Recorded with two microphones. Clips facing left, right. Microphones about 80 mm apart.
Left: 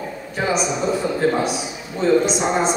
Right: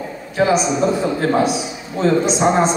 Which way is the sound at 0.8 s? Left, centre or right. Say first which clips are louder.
Right 3 dB; right.